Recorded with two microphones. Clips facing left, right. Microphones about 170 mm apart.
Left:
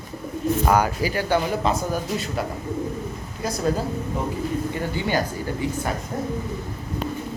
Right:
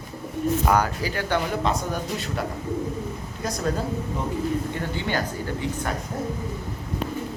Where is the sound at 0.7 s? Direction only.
10° left (ahead or behind).